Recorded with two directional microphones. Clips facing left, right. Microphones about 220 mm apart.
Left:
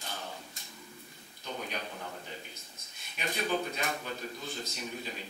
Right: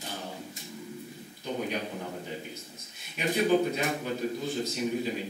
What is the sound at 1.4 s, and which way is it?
A man's voice, 10° right (ahead or behind).